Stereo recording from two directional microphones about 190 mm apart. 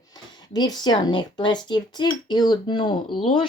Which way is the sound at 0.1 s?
20° left (ahead or behind).